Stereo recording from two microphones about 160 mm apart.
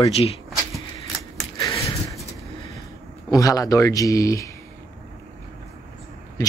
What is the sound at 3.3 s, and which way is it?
Speech, 20° left (ahead or behind).